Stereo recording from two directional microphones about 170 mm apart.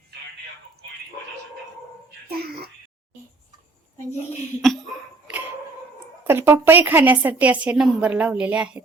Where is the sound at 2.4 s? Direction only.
65° right (ahead or behind).